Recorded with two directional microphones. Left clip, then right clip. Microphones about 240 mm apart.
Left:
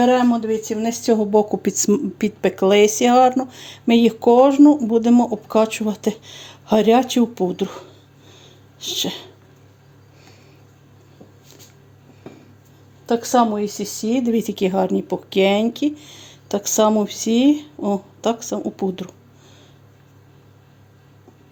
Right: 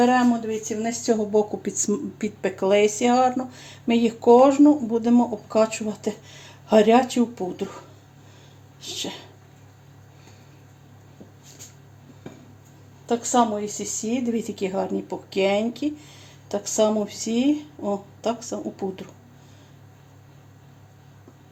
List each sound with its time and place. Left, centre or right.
0.0 s speech: left
8.3 s wheeze: left
13.1 s speech: left